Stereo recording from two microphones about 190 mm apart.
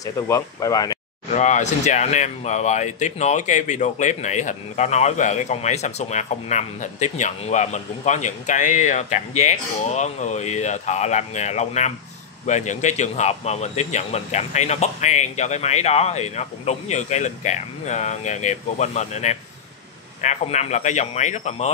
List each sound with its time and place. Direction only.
0.0 s speech: 20° left (ahead or behind)
1.3 s speech: 40° left (ahead or behind)